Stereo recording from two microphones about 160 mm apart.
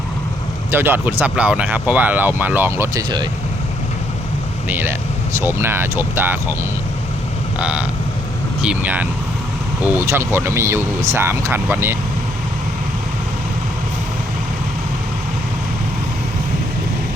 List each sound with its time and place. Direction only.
0.7 s speech: 15° right (ahead or behind)
4.7 s speech: 10° right (ahead or behind)
7.6 s speech: 5° right (ahead or behind)